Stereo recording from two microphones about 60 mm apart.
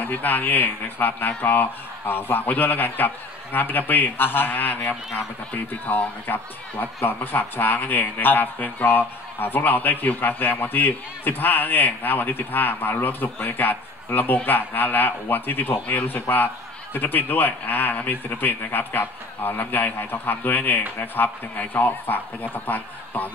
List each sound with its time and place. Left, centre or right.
0.0 s a man's voice: left